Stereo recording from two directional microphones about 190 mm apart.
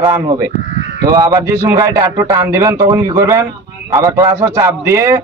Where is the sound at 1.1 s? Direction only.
20° right (ahead or behind).